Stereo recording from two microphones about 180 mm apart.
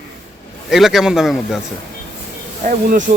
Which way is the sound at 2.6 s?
45° right (ahead or behind).